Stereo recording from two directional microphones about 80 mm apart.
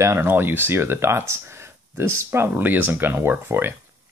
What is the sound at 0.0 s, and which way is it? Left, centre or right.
Speech, right.